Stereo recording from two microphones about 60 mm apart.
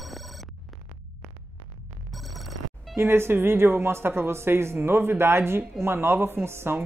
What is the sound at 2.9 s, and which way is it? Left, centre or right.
Speech, right.